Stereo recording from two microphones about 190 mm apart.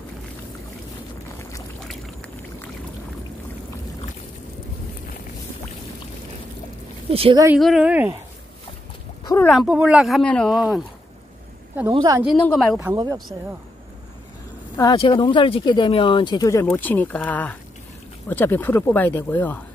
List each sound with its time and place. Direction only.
1.8 s boat: centre (ahead or behind)
7.1 s speech: 30° right (ahead or behind)
7.5 s speech: centre (ahead or behind)
9.5 s speech: 5° right (ahead or behind)
11.9 s speech: 25° right (ahead or behind)
12.4 s speech: 10° left (ahead or behind)
12.7 s speech: 15° right (ahead or behind)
14.8 s speech: 25° left (ahead or behind)